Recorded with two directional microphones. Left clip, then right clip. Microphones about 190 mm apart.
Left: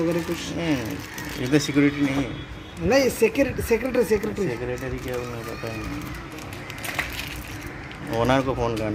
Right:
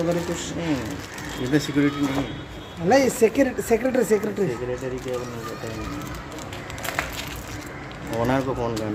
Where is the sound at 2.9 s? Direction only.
25° right (ahead or behind).